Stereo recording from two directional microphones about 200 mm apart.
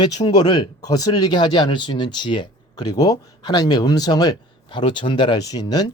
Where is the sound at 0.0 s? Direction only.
20° left (ahead or behind).